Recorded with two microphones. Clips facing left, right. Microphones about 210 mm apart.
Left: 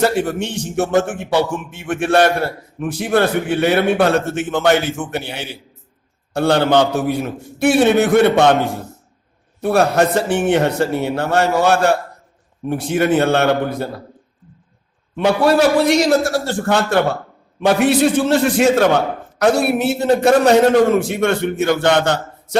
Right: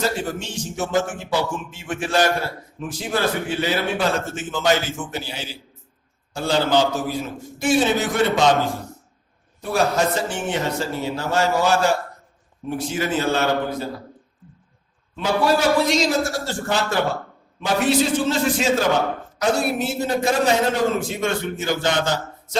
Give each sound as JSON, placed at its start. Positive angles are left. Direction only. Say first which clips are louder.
{"t": 0.0, "sound": "a man's voice", "louder": "left 7 dB", "side_deg": 65}
{"t": 9.6, "sound": "a man's voice", "louder": "left 6 dB", "side_deg": 60}
{"t": 15.1, "sound": "a man's voice", "louder": "left 5 dB", "side_deg": 60}